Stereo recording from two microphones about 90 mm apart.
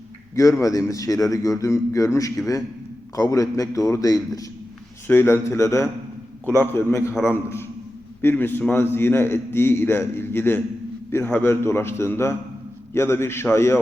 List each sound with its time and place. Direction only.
0.6 s a man's voice: 40° left (ahead or behind)
5.0 s a man's voice: 30° left (ahead or behind)